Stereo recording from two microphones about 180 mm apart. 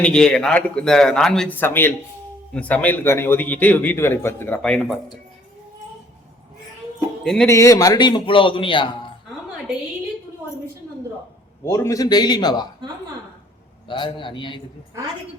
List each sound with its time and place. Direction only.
0.0 s a man's voice: 5° left (ahead or behind)
7.4 s a man's voice: 15° left (ahead or behind)
11.6 s a man's voice: 15° left (ahead or behind)
13.8 s a man's voice: 25° left (ahead or behind)